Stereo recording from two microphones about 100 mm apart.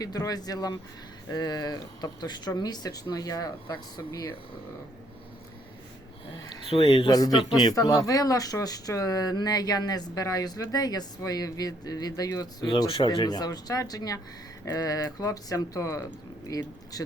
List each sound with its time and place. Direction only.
0.0 s speech: 40° left (ahead or behind)
6.7 s speech: 75° left (ahead or behind)
7.1 s speech: 40° left (ahead or behind)
12.6 s speech: 55° left (ahead or behind); by 17.0 s 35° left (ahead or behind)